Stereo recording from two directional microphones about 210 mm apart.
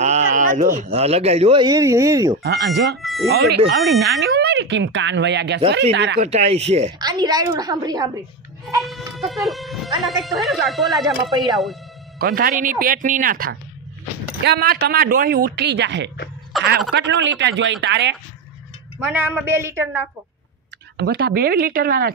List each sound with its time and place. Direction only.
0.0 s speech: 35° right (ahead or behind); by 2.3 s 15° right (ahead or behind)
2.4 s speech: 50° right (ahead or behind)
3.0 s a sound: centre (ahead or behind)
3.3 s a man's voice: 50° right (ahead or behind)
6.2 s speech: 30° right (ahead or behind)
7.0 s a woman's voice: 20° right (ahead or behind)
8.8 s speech: centre (ahead or behind)
12.2 s speech: 45° right (ahead or behind)
16.5 s telephone: centre (ahead or behind)
16.9 s a man's voice: 60° right (ahead or behind)
18.9 s a woman's voice: 10° right (ahead or behind)
21.0 s speech: 50° right (ahead or behind)